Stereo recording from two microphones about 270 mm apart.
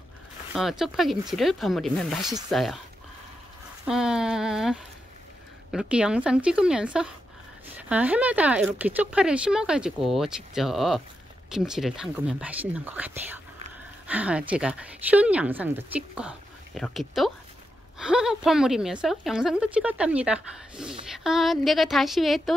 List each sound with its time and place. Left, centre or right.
0.6 s speech: centre
3.8 s speech: centre